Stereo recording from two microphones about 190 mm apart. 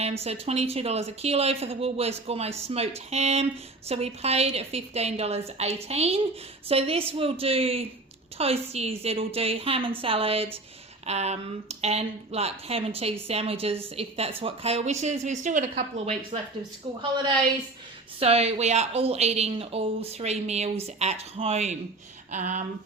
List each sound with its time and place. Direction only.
0.2 s a woman's voice: 30° right (ahead or behind)
18.2 s speech: 30° right (ahead or behind)